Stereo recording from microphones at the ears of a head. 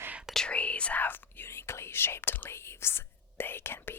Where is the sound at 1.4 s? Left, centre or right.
Left.